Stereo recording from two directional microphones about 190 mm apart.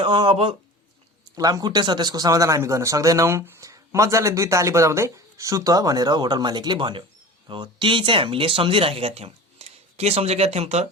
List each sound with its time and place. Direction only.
0.0 s speech: 25° right (ahead or behind)